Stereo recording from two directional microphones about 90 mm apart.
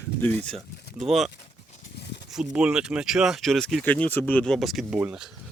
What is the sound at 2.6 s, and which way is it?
Speech, 10° right (ahead or behind).